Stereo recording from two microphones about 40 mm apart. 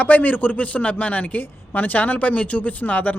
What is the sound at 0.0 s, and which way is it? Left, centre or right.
Speech, left.